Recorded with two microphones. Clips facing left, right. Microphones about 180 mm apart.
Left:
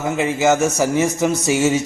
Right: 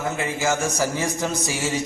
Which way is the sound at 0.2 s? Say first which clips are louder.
Left 10 dB; 20° left (ahead or behind).